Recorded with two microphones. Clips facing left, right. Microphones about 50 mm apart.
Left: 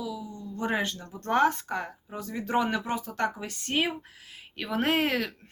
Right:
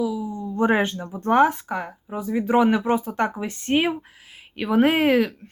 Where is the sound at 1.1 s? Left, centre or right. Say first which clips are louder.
Right 6 dB; centre.